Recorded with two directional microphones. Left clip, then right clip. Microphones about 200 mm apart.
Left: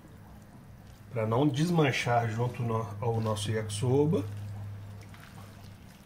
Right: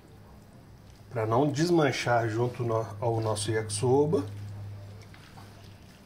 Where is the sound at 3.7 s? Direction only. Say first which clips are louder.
Right 3 dB; 20° right (ahead or behind).